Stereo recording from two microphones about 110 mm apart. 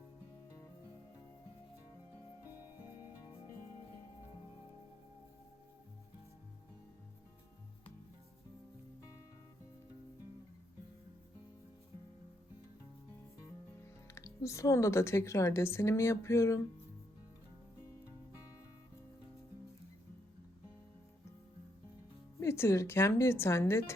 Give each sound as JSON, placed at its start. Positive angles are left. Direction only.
{"t": 9.0, "sound": "music", "side_deg": 35}
{"t": 14.2, "sound": "a woman's voice", "side_deg": 25}
{"t": 22.4, "sound": "a woman's voice", "side_deg": 25}